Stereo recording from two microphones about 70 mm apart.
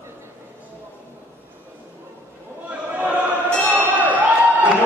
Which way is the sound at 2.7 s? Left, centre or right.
Right.